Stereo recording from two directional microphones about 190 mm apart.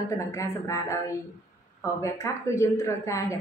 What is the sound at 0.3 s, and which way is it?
Speech, 15° left (ahead or behind).